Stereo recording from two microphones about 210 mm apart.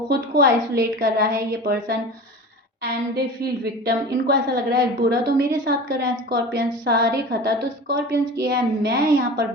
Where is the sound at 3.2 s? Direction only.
45° right (ahead or behind).